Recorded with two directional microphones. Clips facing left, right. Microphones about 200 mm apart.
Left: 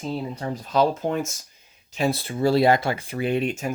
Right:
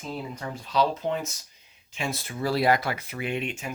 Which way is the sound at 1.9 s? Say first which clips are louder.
Left 8 dB; 35° left (ahead or behind).